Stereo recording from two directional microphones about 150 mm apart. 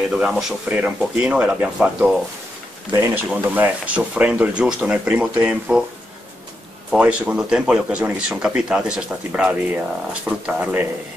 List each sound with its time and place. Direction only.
0.1 s speech: 5° right (ahead or behind)
2.9 s speech: 20° right (ahead or behind)
6.9 s speech: 10° right (ahead or behind)